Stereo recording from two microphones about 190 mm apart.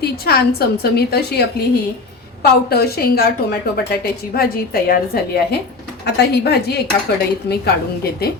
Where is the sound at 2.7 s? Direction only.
55° left (ahead or behind).